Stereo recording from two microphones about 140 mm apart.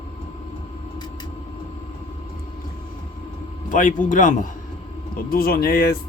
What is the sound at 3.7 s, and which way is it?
Speech, 70° left (ahead or behind).